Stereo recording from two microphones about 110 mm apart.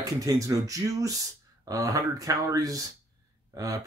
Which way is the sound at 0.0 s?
30° right (ahead or behind).